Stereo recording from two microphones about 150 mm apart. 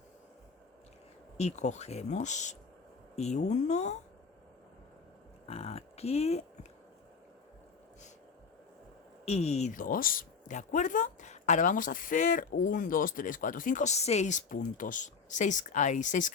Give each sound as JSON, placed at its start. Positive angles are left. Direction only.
{"t": 1.4, "sound": "speech", "side_deg": 50}
{"t": 5.5, "sound": "speech", "side_deg": 40}
{"t": 9.2, "sound": "a woman's voice", "side_deg": 45}